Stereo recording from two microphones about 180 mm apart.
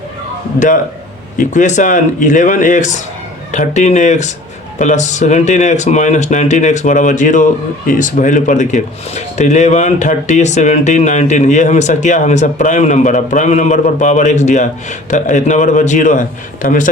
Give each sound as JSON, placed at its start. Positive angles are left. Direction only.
{"t": 1.4, "sound": "a man's voice", "side_deg": 45}